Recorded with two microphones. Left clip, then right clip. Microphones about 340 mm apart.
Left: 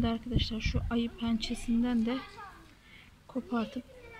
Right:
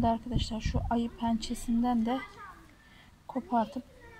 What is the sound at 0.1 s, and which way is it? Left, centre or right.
Speech, centre.